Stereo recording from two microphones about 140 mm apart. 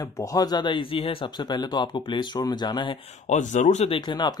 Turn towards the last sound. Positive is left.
turn(degrees=30)  # may be behind; listen again after turning